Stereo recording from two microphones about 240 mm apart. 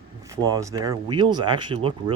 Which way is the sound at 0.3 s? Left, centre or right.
Centre.